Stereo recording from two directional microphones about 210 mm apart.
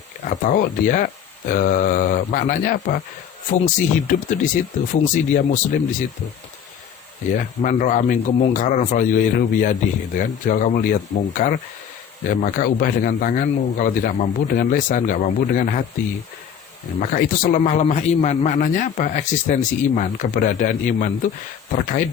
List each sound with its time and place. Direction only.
0.3 s a man's voice: 40° left (ahead or behind)
7.3 s a man's voice: 40° left (ahead or behind)
17.0 s a man's voice: 40° left (ahead or behind)
17.6 s a man's voice: 30° left (ahead or behind)